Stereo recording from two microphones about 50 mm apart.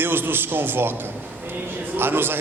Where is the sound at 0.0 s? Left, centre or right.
Right.